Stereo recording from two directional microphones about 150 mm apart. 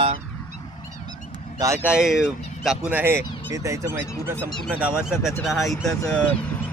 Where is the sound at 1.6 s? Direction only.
20° right (ahead or behind).